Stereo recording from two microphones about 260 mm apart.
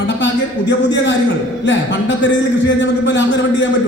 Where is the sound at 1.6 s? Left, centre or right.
Left.